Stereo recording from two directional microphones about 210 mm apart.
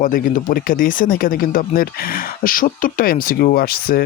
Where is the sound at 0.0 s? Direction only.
40° left (ahead or behind).